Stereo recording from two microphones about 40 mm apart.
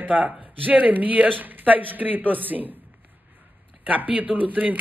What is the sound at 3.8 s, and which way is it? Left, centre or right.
Speech, right.